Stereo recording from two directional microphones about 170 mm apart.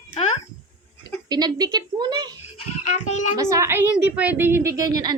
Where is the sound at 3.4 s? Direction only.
20° right (ahead or behind).